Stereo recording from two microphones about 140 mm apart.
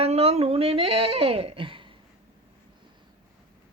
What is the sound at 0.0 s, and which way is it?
Speech, 45° right (ahead or behind).